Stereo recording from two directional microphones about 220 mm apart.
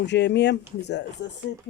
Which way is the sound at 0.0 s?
50° left (ahead or behind).